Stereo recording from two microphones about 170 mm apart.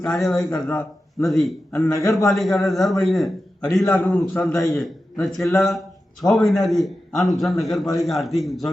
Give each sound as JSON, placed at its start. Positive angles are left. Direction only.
{"t": 0.5, "sound": "a man's voice", "side_deg": 15}
{"t": 1.3, "sound": "a man's voice", "side_deg": 0}
{"t": 1.7, "sound": "a man's voice", "side_deg": 15}
{"t": 2.3, "sound": "a man's voice", "side_deg": 0}